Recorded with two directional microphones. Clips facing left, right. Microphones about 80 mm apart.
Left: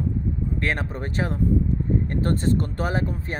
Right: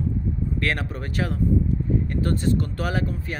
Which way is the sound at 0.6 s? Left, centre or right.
Left.